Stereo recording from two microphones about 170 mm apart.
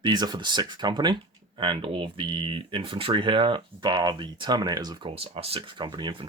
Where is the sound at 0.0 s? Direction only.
25° right (ahead or behind).